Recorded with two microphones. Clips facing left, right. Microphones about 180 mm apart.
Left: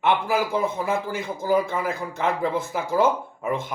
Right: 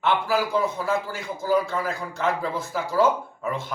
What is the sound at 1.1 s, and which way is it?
Speech, 20° left (ahead or behind).